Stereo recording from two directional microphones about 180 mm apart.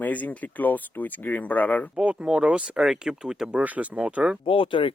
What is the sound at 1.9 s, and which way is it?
Speech, 5° right (ahead or behind).